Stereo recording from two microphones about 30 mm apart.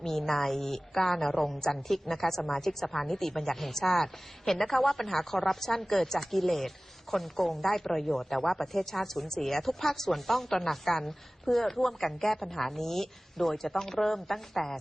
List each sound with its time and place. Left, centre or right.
0.0 s speech: centre